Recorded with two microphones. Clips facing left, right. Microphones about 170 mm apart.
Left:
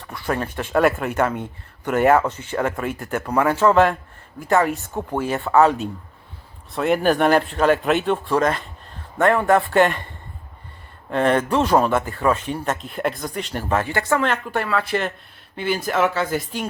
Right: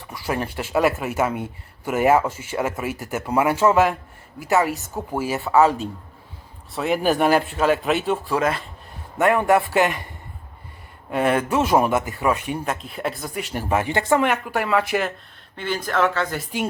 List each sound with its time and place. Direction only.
0.1 s speech: 10° right (ahead or behind)
11.1 s speech: 10° right (ahead or behind)
15.5 s speech: 10° left (ahead or behind)